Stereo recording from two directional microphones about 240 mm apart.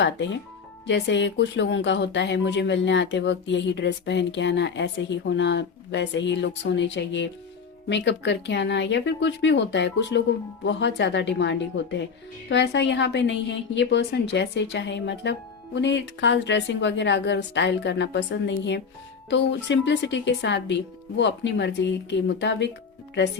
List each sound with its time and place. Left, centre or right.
0.0 s speech: left